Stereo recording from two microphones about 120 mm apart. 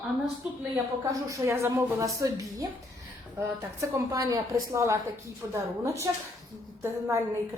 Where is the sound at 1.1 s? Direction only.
25° right (ahead or behind).